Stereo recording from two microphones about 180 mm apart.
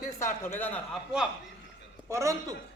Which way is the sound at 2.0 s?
15° right (ahead or behind).